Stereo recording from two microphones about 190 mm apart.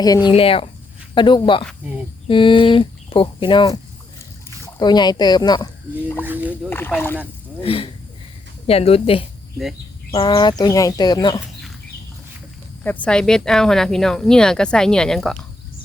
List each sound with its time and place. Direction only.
0.3 s speech: 30° left (ahead or behind)
6.2 s a sound: 10° right (ahead or behind)
6.7 s speech: 10° left (ahead or behind)
7.6 s a woman's voice: 30° left (ahead or behind)
12.8 s speech: 10° left (ahead or behind)